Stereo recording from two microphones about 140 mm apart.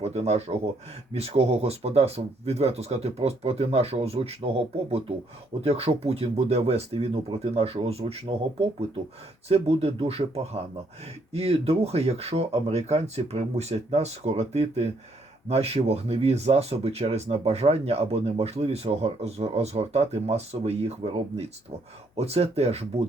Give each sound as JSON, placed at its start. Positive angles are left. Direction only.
{"t": 0.0, "sound": "speech", "side_deg": -50}